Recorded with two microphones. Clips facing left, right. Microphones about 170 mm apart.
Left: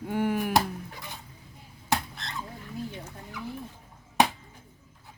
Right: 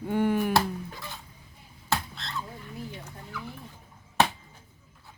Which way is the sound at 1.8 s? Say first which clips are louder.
Left 1 dB; 15° left (ahead or behind).